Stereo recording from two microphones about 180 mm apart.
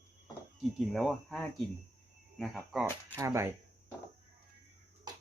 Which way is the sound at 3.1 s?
15° right (ahead or behind).